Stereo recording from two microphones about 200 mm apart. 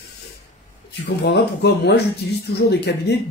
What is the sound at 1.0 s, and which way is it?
Speech, 60° left (ahead or behind).